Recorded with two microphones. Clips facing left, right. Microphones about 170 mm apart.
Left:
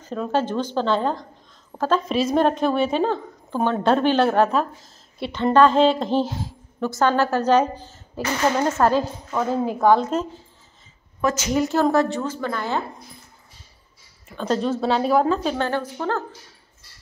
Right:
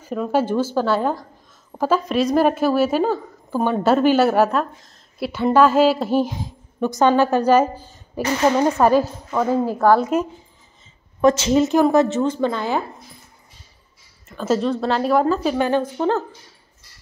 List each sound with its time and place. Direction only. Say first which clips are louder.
0.0 s a woman's voice: right 3 dB; 10° right (ahead or behind)
11.1 s a woman's voice: right 6 dB; 30° right (ahead or behind)
14.3 s a woman's voice: right 2 dB; 5° right (ahead or behind)